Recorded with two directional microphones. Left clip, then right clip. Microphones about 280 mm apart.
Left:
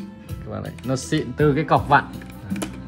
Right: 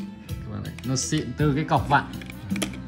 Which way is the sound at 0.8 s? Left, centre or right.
Centre.